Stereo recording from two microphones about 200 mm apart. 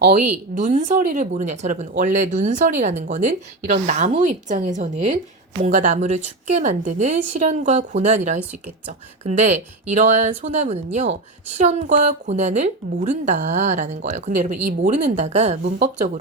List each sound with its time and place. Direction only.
0.5 s speech: 35° right (ahead or behind)